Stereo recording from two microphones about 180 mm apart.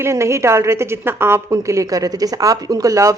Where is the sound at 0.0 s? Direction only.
15° right (ahead or behind).